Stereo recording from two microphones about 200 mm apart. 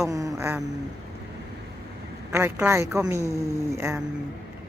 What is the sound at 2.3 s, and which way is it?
A woman's voice, 15° right (ahead or behind).